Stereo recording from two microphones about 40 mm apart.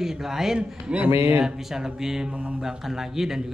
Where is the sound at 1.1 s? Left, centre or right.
Right.